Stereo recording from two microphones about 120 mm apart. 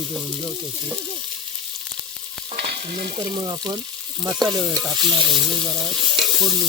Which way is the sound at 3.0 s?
40° right (ahead or behind).